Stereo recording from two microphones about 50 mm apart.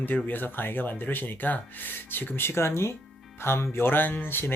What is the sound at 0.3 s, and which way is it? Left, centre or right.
Speech, left.